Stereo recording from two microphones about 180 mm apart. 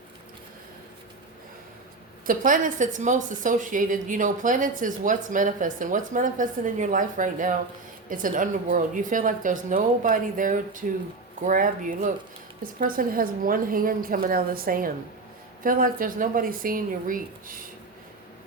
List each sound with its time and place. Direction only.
2.2 s speech: 50° right (ahead or behind)